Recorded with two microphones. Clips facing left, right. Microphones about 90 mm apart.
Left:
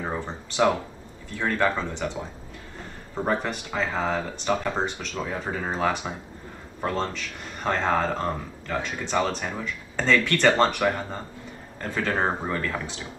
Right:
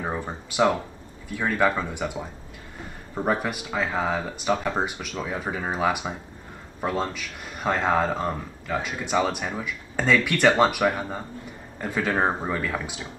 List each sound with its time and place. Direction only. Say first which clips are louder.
0.2 s speech: even; 10° right (ahead or behind)